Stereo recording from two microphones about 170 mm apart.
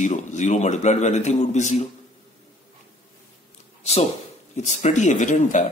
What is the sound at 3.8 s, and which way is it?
Speech, 40° left (ahead or behind).